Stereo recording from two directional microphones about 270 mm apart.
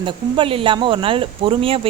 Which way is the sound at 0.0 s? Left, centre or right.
Centre.